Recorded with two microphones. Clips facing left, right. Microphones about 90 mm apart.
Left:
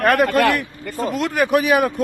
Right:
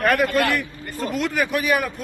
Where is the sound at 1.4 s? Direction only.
70° left (ahead or behind).